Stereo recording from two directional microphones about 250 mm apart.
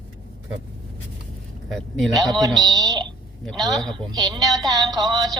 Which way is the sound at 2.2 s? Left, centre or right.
Centre.